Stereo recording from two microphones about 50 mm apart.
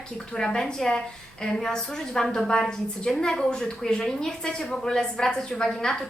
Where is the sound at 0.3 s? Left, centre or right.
Centre.